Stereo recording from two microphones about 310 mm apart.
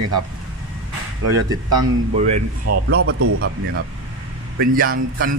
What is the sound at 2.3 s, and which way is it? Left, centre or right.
Speech, right.